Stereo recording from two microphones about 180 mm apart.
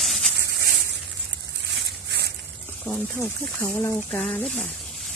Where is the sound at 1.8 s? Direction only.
70° right (ahead or behind).